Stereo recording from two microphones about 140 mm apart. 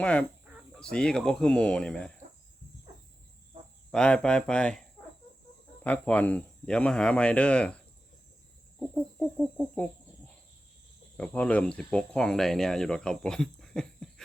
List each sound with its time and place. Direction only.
0.0 s speech: 10° left (ahead or behind)
3.9 s speech: 5° left (ahead or behind)
5.8 s speech: 10° left (ahead or behind)
8.8 s chicken: 5° left (ahead or behind)
11.2 s speech: 10° left (ahead or behind)